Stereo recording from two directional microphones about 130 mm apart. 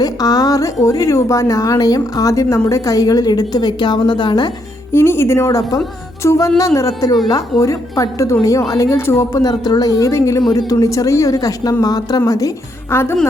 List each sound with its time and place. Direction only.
0.0 s a woman's voice: 30° left (ahead or behind)
4.9 s a woman's voice: 20° left (ahead or behind)